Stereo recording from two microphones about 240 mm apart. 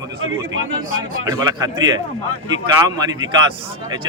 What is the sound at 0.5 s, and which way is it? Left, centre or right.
Speech, right.